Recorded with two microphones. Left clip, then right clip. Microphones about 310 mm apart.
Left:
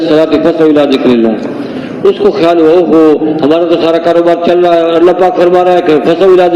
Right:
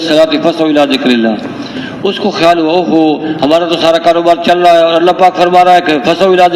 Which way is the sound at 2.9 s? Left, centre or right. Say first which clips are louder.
Left 4 dB; right.